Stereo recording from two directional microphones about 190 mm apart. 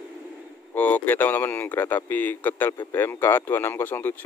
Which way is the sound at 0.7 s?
10° left (ahead or behind).